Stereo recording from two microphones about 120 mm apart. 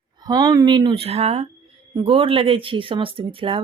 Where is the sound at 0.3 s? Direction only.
35° right (ahead or behind); by 1.5 s 60° right (ahead or behind).